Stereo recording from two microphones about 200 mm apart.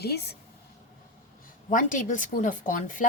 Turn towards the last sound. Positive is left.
turn(degrees=40)  # may be behind; listen again after turning